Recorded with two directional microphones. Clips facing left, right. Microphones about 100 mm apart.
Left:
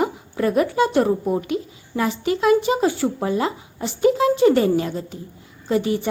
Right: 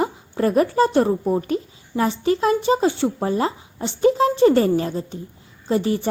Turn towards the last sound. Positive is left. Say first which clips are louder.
# even
turn(degrees=-35)  # may be behind; listen again after turning